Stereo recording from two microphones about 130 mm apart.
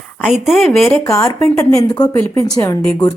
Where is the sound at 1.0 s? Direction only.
25° left (ahead or behind).